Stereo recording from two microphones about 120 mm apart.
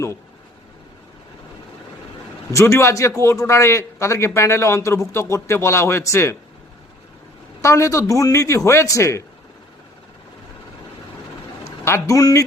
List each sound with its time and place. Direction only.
2.5 s a man's voice: 20° left (ahead or behind)
7.6 s a man's voice: 25° left (ahead or behind)
11.6 s speech: 25° left (ahead or behind)